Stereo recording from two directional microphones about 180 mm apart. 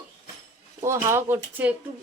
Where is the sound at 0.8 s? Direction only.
15° right (ahead or behind).